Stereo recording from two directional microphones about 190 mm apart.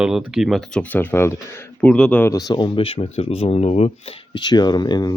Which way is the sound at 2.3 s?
20° left (ahead or behind).